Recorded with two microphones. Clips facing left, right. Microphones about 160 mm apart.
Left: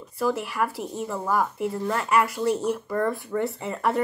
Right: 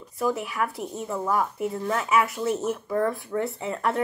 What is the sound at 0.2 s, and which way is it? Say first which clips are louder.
A woman's voice: left 1 dB; centre (ahead or behind).